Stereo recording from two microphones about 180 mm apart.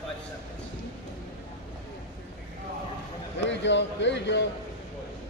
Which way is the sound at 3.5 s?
80° left.